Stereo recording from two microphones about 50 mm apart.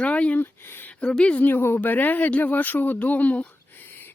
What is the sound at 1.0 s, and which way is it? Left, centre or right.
Speech, left.